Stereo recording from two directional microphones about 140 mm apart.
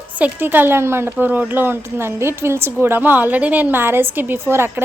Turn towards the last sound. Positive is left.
turn(degrees=-15)  # may be behind; listen again after turning